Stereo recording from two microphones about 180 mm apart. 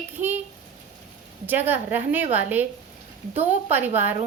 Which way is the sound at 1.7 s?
10° right (ahead or behind).